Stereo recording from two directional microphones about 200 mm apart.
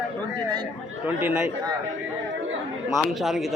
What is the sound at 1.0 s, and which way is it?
Speech, 10° right (ahead or behind).